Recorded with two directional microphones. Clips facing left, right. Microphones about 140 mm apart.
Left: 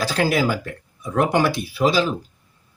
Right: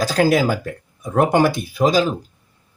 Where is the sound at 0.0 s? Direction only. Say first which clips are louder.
Right 4 dB; 40° right (ahead or behind).